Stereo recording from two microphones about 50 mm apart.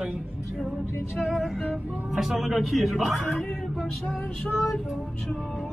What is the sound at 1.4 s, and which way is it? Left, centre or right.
Speech, centre.